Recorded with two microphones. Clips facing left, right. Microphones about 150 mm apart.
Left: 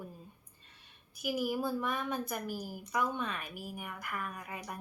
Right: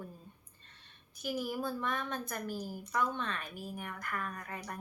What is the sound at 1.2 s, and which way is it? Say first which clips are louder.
Speech: left 3 dB; 10° left (ahead or behind).